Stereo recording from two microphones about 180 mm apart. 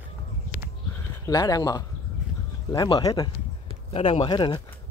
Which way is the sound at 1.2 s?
20° left (ahead or behind).